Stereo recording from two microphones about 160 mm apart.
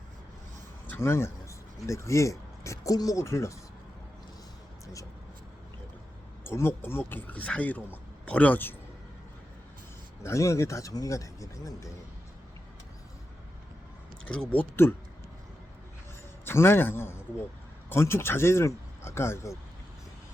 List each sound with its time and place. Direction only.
0.9 s speech: 15° left (ahead or behind)
6.4 s speech: 15° left (ahead or behind)
10.2 s speech: 20° left (ahead or behind)
14.5 s speech: 10° left (ahead or behind)
16.5 s speech: 15° left (ahead or behind)